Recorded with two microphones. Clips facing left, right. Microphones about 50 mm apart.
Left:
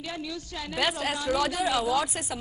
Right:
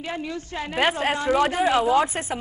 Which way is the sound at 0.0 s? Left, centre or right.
Right.